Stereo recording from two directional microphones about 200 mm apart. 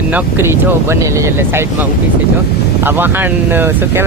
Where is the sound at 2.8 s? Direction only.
10° right (ahead or behind).